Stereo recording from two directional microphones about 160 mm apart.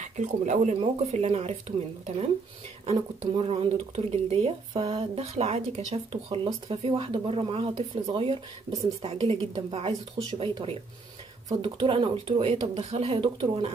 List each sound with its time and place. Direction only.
0.0 s speech: 50° right (ahead or behind)
0.7 s speech: 40° right (ahead or behind)
2.9 s speech: 35° right (ahead or behind)